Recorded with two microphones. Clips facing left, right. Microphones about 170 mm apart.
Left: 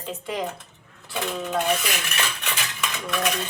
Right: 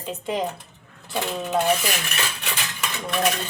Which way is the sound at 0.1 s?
25° right (ahead or behind).